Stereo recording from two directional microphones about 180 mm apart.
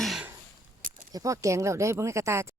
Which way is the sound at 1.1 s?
20° right (ahead or behind).